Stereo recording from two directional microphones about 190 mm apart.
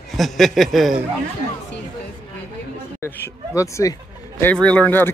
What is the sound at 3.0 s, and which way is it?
Speech, 15° left (ahead or behind).